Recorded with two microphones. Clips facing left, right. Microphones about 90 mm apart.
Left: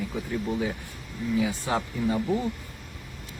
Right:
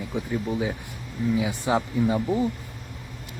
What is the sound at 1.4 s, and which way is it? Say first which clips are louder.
Speech: right 2 dB; 15° right (ahead or behind).